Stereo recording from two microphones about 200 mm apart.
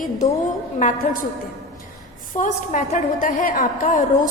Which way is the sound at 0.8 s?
40° left (ahead or behind).